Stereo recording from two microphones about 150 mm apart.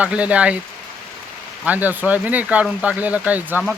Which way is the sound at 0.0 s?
10° right (ahead or behind).